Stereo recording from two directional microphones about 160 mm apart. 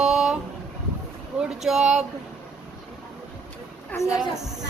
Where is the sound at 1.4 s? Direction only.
5° right (ahead or behind).